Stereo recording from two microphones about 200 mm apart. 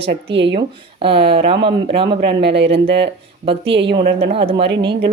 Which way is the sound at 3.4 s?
25° right (ahead or behind).